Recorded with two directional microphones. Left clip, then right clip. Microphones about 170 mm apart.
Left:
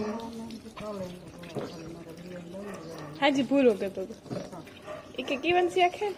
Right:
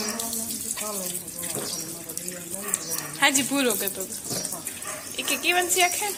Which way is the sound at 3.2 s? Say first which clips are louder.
Right 1 dB; 35° left (ahead or behind).